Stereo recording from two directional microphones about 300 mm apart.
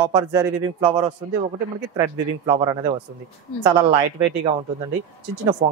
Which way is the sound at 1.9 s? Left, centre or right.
Centre.